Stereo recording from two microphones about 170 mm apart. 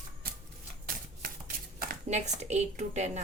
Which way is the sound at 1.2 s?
55° right (ahead or behind).